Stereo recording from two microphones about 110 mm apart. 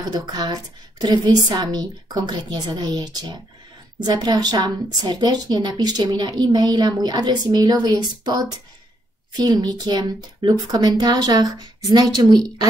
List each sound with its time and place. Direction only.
0.1 s a woman's voice: 40° right (ahead or behind)